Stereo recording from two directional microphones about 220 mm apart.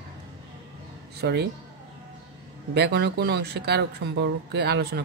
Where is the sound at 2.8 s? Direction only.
50° right (ahead or behind).